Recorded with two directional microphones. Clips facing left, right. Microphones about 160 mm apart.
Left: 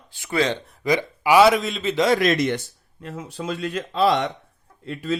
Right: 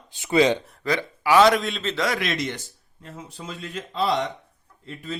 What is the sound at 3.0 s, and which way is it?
Speech, 75° left (ahead or behind).